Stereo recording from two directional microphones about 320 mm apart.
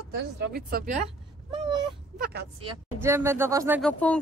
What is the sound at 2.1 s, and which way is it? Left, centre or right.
Speech, right.